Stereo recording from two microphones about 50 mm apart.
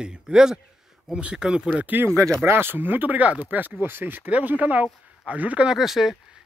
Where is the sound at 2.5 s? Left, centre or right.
Right.